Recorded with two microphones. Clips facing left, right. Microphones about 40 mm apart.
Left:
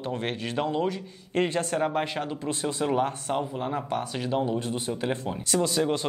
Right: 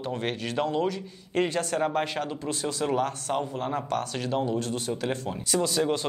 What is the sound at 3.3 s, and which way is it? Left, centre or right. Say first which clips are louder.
A man's voice: right 1 dB; centre.